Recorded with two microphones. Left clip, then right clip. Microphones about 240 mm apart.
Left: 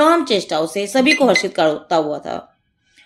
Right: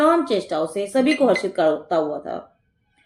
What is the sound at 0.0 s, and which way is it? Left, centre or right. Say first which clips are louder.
Speech: left 4 dB; left.